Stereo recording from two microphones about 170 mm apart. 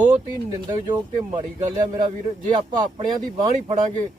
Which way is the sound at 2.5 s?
25° right (ahead or behind).